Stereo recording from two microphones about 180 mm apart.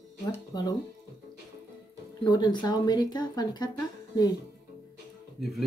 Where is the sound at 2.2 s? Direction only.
25° left (ahead or behind).